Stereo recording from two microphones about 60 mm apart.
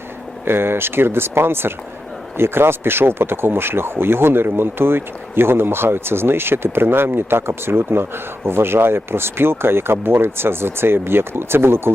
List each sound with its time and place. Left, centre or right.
0.4 s speech: right